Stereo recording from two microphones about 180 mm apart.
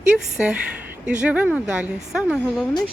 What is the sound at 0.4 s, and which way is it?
A woman's voice, 10° right (ahead or behind).